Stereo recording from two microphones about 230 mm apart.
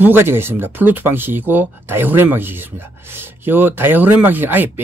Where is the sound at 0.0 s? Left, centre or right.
Centre.